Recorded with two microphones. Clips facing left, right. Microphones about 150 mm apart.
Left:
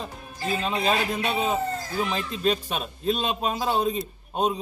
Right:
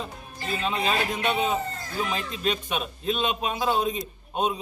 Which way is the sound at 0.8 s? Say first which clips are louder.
Left 2 dB; 40° left (ahead or behind).